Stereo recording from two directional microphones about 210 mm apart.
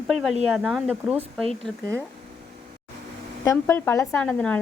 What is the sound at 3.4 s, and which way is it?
A woman's voice, 10° left (ahead or behind).